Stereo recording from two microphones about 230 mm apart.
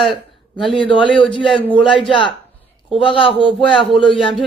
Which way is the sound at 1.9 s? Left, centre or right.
Centre.